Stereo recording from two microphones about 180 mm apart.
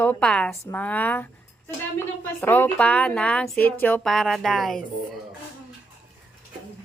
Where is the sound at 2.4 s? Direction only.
10° left (ahead or behind).